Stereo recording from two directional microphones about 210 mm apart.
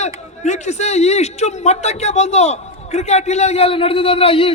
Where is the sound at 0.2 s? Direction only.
35° left (ahead or behind).